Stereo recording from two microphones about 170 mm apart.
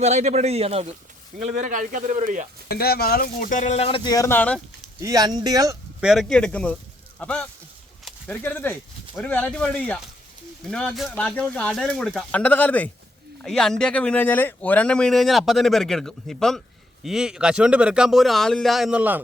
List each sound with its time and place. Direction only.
0.0 s a man's voice: 40° right (ahead or behind)
2.6 s speech: 65° left (ahead or behind); by 4.6 s 10° left (ahead or behind)
4.9 s speech: 20° right (ahead or behind)
6.0 s speech: centre (ahead or behind)